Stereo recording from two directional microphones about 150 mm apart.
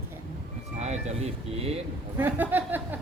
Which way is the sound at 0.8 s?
45° right (ahead or behind).